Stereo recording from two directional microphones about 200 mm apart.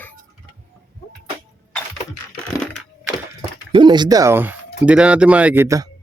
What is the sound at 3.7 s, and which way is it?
Speech, 25° right (ahead or behind).